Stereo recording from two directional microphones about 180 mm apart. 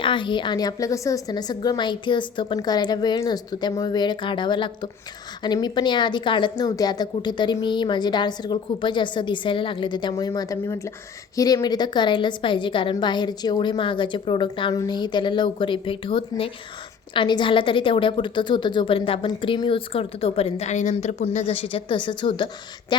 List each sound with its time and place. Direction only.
0.0 s a woman's voice: 25° left (ahead or behind)